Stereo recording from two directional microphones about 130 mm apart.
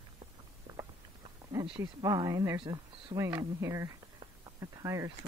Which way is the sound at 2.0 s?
25° right (ahead or behind).